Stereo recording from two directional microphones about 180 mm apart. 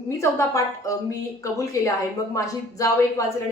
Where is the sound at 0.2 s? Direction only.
15° left (ahead or behind).